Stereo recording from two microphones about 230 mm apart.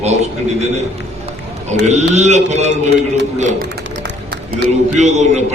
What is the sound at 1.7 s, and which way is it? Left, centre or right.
A man's voice, right.